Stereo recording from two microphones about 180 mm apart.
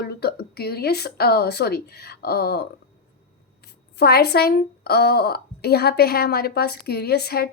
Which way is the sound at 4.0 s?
65° left (ahead or behind).